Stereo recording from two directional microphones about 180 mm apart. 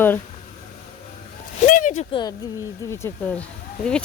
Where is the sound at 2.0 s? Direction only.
25° left (ahead or behind); by 4.0 s 5° left (ahead or behind).